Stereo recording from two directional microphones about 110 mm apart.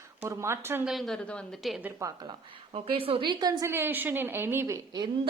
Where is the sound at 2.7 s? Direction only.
55° right (ahead or behind); by 3.6 s 40° right (ahead or behind).